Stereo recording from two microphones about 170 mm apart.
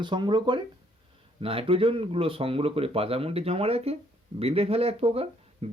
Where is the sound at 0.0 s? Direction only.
25° right (ahead or behind).